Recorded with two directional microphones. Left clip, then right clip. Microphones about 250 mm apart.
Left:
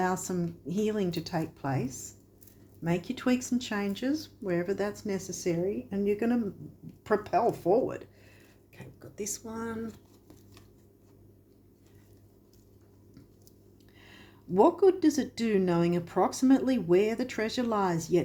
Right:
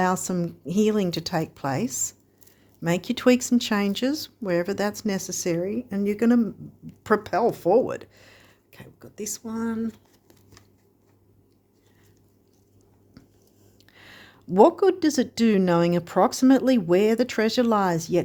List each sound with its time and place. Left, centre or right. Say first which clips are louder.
0.0 s speech: right 6 dB; right
13.9 s speech: right 7 dB; right